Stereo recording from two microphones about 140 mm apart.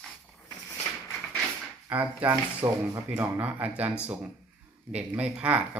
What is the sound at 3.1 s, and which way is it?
Speech, 15° right (ahead or behind).